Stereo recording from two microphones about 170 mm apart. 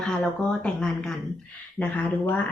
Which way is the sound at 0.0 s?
5° left (ahead or behind).